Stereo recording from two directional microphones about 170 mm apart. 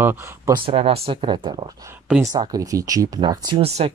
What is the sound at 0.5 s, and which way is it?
Speech, 35° right (ahead or behind).